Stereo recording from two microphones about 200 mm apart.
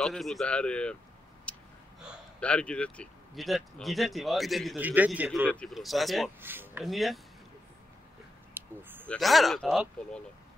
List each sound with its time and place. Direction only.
0.0 s speech: centre (ahead or behind)
1.5 s gasp: 5° left (ahead or behind)
2.4 s speech: 5° left (ahead or behind)
5.5 s speech: 5° left (ahead or behind)
6.4 s speech: 10° right (ahead or behind)
8.5 s a sound: 10° right (ahead or behind)
9.0 s speech: centre (ahead or behind)